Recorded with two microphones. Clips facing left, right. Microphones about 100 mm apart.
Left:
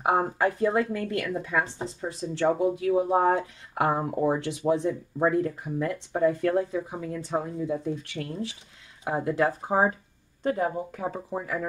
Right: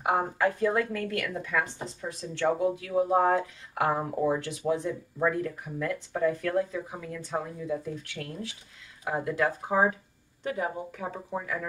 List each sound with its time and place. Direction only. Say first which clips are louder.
0.0 s speech: left 2 dB; 30° left (ahead or behind)